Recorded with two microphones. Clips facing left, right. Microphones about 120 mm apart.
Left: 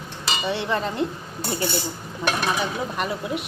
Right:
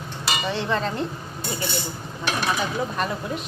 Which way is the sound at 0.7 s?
15° left (ahead or behind).